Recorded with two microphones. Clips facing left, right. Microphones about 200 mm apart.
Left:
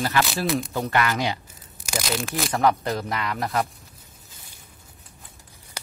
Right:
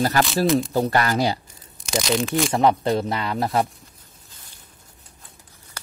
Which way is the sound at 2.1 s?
Centre (ahead or behind).